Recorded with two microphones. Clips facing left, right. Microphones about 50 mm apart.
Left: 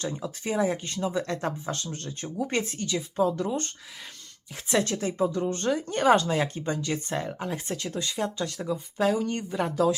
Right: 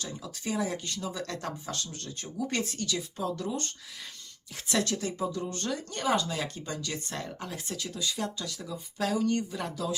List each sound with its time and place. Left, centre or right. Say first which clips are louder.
0.0 s speech: left 5 dB; left
4.7 s speech: left 4 dB; left
7.8 s speech: even; left
9.0 s speech: left 2 dB; left